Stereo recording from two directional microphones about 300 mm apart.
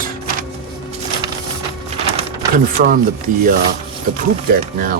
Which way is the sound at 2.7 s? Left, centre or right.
Right.